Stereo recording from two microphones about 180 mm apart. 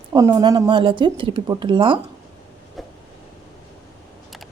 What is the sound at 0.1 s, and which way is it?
Speech, 20° right (ahead or behind).